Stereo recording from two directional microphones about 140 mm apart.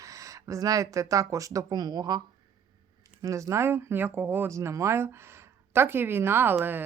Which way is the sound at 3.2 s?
20° right (ahead or behind).